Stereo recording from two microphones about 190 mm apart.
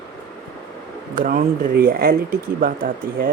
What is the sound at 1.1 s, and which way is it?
Speech, 45° right (ahead or behind).